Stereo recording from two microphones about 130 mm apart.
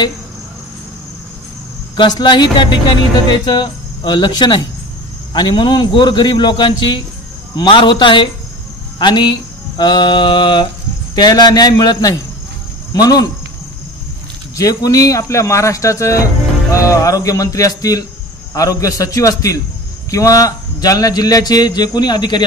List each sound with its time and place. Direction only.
2.0 s a man's voice: 35° left (ahead or behind)
8.9 s a sound: 35° left (ahead or behind)
11.1 s a man's voice: 30° left (ahead or behind)
14.6 s a man's voice: 25° left (ahead or behind)